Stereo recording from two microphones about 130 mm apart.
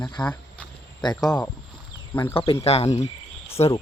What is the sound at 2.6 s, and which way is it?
Speech, 50° left (ahead or behind).